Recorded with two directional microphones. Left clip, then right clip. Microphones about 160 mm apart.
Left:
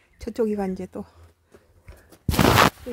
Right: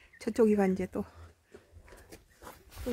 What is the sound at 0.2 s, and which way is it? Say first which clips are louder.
Speech: left 1 dB; 5° left (ahead or behind).